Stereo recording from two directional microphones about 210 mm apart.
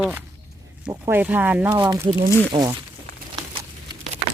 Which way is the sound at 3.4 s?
20° right (ahead or behind).